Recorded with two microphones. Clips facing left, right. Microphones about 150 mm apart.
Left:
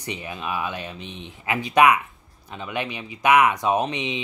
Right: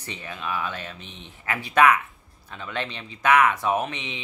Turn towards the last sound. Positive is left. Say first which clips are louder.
# left 3 dB
turn(degrees=15)  # may be behind; listen again after turning